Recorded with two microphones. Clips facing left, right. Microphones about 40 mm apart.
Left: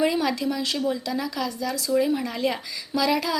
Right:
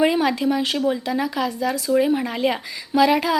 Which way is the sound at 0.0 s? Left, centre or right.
Right.